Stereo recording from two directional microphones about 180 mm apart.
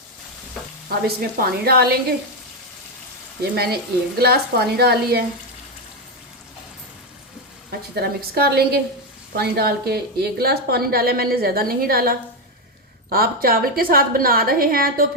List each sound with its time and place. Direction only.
0.9 s a woman's voice: 55° right (ahead or behind)
3.4 s a woman's voice: 60° right (ahead or behind)
7.9 s a woman's voice: 60° right (ahead or behind)